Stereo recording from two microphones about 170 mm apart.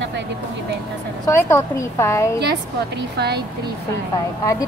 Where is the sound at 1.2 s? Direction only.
15° left (ahead or behind).